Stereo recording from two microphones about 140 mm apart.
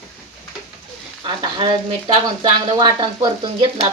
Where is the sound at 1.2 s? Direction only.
35° right (ahead or behind).